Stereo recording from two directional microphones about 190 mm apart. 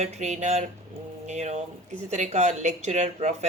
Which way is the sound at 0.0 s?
35° right (ahead or behind).